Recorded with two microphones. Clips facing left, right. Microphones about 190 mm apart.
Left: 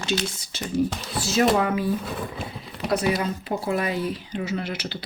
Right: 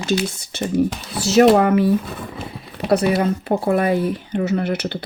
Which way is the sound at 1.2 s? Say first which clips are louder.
Right 8 dB; 70° right (ahead or behind).